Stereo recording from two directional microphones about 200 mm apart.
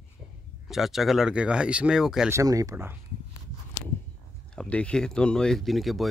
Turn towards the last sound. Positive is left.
turn(degrees=0)  # may be behind; listen again after turning